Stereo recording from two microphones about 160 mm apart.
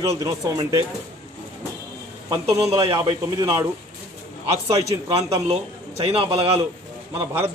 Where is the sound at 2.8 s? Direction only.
35° right (ahead or behind).